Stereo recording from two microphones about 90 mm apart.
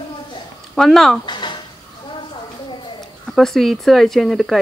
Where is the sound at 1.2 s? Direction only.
60° left (ahead or behind).